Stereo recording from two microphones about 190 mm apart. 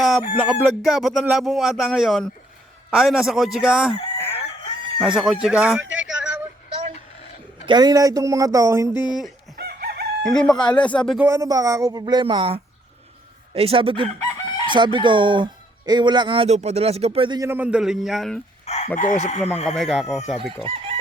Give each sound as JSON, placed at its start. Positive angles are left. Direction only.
{"t": 0.2, "sound": "speech", "side_deg": -5}
{"t": 2.9, "sound": "crowing", "side_deg": 0}
{"t": 4.9, "sound": "speech", "side_deg": -5}
{"t": 6.0, "sound": "a sound", "side_deg": -5}
{"t": 7.6, "sound": "speech", "side_deg": -25}
{"t": 8.9, "sound": "speech", "side_deg": 20}
{"t": 9.6, "sound": "chicken", "side_deg": -55}
{"t": 10.2, "sound": "speech", "side_deg": 5}
{"t": 11.3, "sound": "speech", "side_deg": -15}
{"t": 18.6, "sound": "chicken", "side_deg": 35}
{"t": 18.9, "sound": "speech", "side_deg": 40}
{"t": 19.7, "sound": "speech", "side_deg": 0}